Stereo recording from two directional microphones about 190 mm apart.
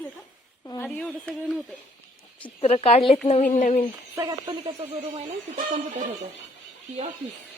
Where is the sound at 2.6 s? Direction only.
30° left (ahead or behind).